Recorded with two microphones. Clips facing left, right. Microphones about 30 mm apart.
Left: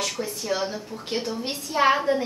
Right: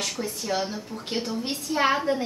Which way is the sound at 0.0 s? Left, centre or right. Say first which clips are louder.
Left 1 dB; centre.